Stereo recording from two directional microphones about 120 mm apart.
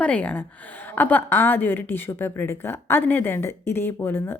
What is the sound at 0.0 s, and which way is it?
A woman's voice, 10° left (ahead or behind).